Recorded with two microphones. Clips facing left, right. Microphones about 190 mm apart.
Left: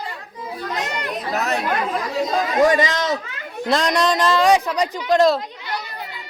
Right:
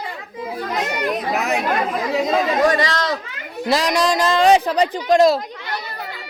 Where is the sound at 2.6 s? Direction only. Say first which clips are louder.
Even; 20° left (ahead or behind).